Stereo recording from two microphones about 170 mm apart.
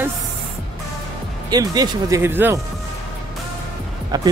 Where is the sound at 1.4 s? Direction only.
25° right (ahead or behind).